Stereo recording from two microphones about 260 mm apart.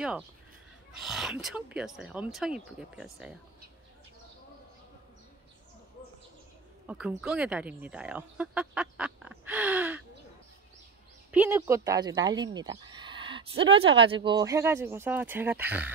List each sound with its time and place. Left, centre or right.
1.0 s speech: centre
6.9 s speech: centre
9.4 s a sound: centre
11.3 s speech: centre